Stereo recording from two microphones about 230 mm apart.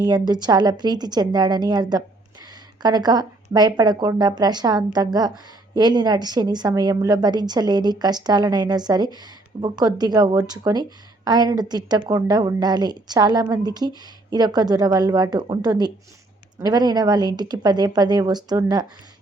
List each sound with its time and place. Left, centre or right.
0.0 s a woman's voice: centre